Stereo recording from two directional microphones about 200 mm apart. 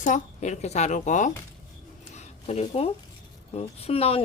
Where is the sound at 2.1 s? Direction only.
30° left (ahead or behind).